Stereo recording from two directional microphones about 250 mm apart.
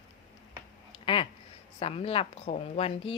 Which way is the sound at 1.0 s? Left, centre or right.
Left.